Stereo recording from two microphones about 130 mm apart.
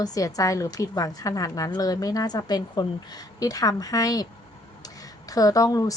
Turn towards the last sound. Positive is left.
turn(degrees=25)  # may be behind; listen again after turning